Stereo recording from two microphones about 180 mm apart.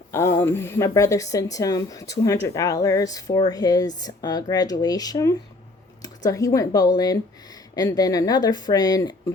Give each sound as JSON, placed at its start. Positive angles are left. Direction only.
{"t": 0.1, "sound": "a woman's voice", "side_deg": 15}